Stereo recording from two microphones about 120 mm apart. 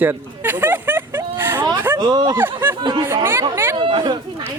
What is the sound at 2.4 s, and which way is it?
Speech, 15° right (ahead or behind).